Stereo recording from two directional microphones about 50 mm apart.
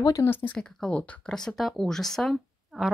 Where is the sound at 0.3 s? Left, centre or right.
Left.